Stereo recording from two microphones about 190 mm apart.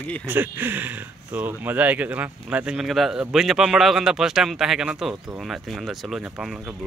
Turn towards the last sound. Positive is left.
turn(degrees=-5)  # may be behind; listen again after turning